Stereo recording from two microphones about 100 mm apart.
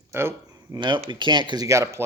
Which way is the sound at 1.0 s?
50° right (ahead or behind).